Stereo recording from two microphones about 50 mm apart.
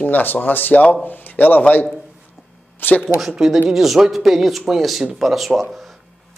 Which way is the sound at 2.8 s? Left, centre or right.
Left.